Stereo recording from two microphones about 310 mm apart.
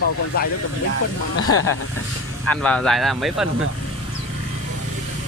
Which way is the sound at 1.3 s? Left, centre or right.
Left.